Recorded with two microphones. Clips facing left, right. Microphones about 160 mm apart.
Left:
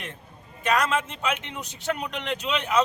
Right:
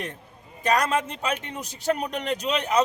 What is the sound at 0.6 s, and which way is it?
A man's voice, 35° right (ahead or behind).